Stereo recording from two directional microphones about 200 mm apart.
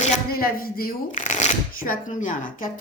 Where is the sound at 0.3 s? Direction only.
50° left (ahead or behind).